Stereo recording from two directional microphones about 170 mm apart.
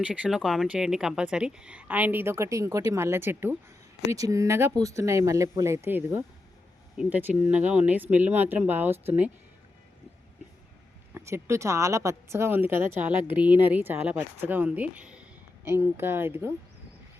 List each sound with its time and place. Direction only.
0.0 s speech: 5° right (ahead or behind)
11.1 s speech: 15° right (ahead or behind)